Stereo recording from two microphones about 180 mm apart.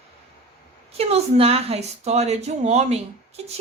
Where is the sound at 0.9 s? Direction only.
35° right (ahead or behind).